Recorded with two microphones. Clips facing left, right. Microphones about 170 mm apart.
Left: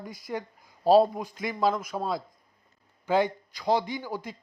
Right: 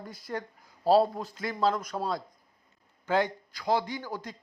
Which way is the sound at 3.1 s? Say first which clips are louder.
Left 2 dB; 15° left (ahead or behind).